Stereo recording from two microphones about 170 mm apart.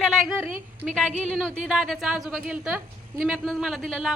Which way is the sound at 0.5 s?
50° right (ahead or behind).